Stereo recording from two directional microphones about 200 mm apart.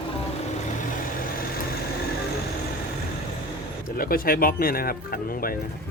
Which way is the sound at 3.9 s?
45° left (ahead or behind).